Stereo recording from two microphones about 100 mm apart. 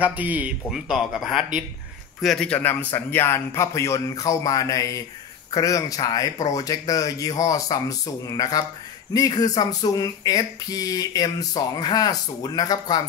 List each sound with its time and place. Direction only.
0.0 s speech: 15° right (ahead or behind)
0.7 s speech: 5° right (ahead or behind)
2.5 s a man's voice: 20° left (ahead or behind); by 13.0 s 40° left (ahead or behind)